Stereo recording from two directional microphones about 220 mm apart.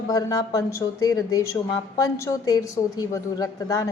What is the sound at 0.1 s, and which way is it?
A woman's voice, 15° left (ahead or behind).